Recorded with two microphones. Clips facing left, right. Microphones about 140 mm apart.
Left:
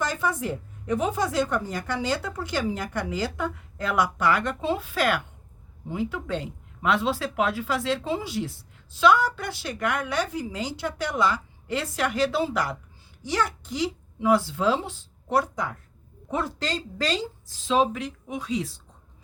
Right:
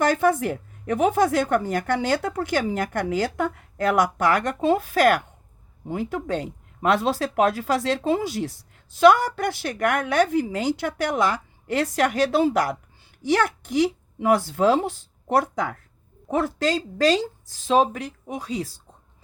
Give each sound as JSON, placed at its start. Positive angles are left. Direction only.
{"t": 0.0, "sound": "a woman's voice", "side_deg": -60}